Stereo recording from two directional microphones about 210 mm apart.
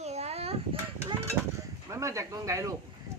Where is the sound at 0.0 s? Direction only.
30° right (ahead or behind).